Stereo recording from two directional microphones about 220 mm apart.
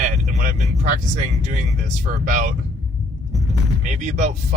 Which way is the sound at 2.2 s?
35° right (ahead or behind).